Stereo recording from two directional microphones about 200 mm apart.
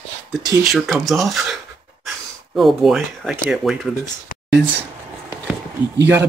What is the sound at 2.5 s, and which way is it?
Speech, centre (ahead or behind).